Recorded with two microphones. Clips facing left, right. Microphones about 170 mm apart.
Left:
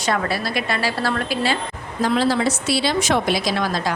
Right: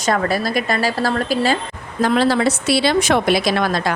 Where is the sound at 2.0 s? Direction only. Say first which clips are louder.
Right 3 dB; 65° right (ahead or behind).